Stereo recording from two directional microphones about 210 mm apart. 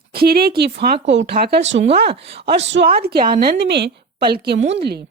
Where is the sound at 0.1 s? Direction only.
45° right (ahead or behind).